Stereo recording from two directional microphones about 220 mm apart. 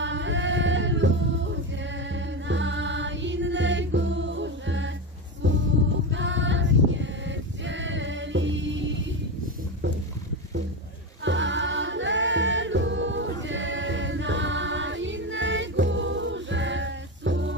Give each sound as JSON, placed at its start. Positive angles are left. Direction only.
{"t": 0.0, "sound": "a sound", "side_deg": -55}
{"t": 2.1, "sound": "music", "side_deg": -55}
{"t": 6.1, "sound": "music", "side_deg": -55}
{"t": 11.2, "sound": "choir", "side_deg": -55}